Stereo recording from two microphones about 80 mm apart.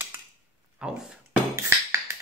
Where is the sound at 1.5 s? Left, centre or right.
Right.